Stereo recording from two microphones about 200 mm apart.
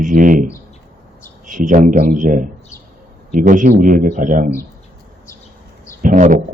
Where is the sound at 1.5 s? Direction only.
40° right (ahead or behind).